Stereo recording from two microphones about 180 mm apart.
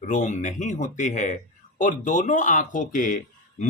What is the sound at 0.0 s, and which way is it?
Speech, 40° left (ahead or behind).